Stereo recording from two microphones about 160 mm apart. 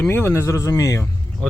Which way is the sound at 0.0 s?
15° left (ahead or behind).